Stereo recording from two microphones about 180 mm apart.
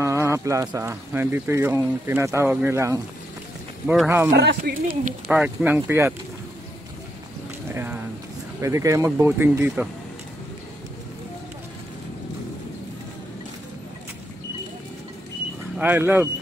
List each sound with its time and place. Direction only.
0.0 s speech: 15° right (ahead or behind)
3.8 s speech: centre (ahead or behind)
4.3 s speech: 65° right (ahead or behind)
5.3 s speech: 10° right (ahead or behind)
7.7 s a sound: 10° right (ahead or behind)
8.5 s speech: 15° right (ahead or behind)
15.8 s speech: 10° right (ahead or behind)